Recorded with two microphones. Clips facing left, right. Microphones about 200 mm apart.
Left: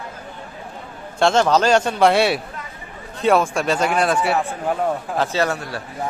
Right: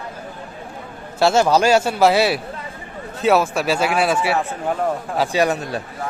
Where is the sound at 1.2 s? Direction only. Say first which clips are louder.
Right 1 dB; 5° right (ahead or behind).